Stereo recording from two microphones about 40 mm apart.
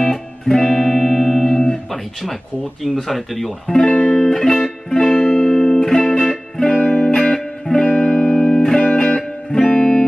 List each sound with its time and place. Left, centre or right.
0.1 s music: centre
2.8 s speech: centre
3.6 s speech: centre
4.3 s music: centre